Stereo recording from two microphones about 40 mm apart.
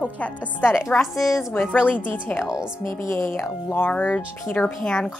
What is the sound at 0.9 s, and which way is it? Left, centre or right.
A woman's voice, left.